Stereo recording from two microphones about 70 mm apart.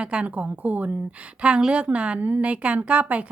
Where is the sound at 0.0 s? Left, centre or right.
Centre.